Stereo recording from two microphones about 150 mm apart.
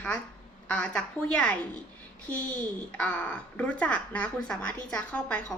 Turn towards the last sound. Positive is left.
turn(degrees=10)  # may be behind; listen again after turning